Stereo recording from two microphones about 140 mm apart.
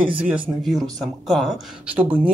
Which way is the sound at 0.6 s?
Centre (ahead or behind).